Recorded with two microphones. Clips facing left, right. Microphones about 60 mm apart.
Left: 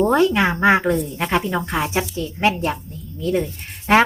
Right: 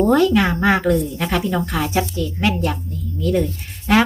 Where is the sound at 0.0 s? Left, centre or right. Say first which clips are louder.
Right 1 dB; left.